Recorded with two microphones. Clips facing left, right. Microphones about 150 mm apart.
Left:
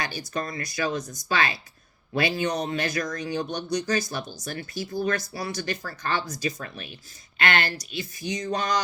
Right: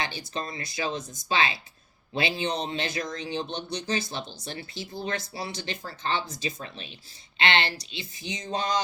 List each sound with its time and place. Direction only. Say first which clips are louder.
0.0 s speech: left 2 dB; 25° right (ahead or behind)